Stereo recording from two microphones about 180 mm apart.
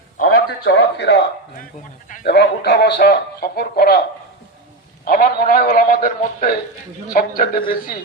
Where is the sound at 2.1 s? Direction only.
50° left (ahead or behind).